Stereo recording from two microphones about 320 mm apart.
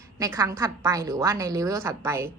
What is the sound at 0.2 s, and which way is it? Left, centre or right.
A woman's voice, centre.